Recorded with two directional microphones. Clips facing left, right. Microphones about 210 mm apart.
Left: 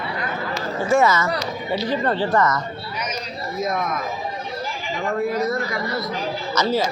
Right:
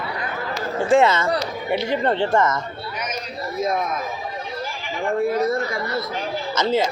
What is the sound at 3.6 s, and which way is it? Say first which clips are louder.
Speech: right 2 dB; 30° right (ahead or behind).